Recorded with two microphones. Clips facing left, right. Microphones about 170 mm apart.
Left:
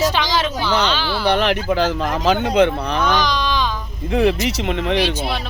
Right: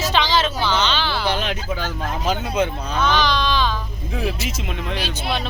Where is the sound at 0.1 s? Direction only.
10° left (ahead or behind).